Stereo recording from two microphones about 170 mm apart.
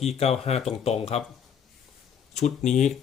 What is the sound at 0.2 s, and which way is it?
Speech, 40° left (ahead or behind).